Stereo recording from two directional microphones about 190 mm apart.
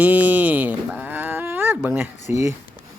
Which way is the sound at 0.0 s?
10° right (ahead or behind).